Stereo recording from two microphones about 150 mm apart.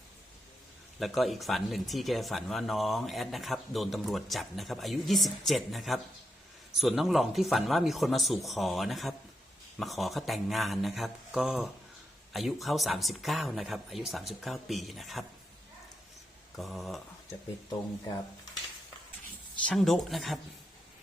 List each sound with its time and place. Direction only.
0.9 s speech: centre (ahead or behind)
16.6 s speech: centre (ahead or behind)
19.6 s speech: centre (ahead or behind)